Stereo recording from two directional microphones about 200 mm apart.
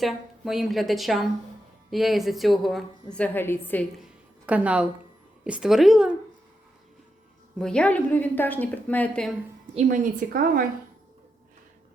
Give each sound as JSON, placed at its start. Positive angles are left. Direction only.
{"t": 0.0, "sound": "a woman's voice", "side_deg": 0}
{"t": 7.6, "sound": "a woman's voice", "side_deg": 5}
{"t": 9.7, "sound": "a woman's voice", "side_deg": -40}